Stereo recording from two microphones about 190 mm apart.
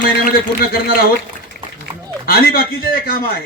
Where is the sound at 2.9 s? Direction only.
50° left (ahead or behind).